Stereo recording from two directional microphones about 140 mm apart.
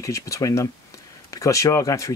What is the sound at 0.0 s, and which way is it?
Speech, 25° left (ahead or behind).